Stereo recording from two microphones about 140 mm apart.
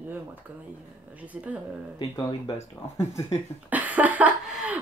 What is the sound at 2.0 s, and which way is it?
Speech, 35° left (ahead or behind).